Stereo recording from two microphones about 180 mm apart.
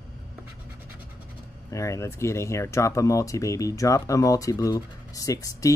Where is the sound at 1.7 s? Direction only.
15° left (ahead or behind).